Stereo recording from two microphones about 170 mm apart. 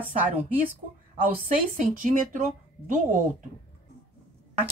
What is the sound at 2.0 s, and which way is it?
Speech, 50° right (ahead or behind).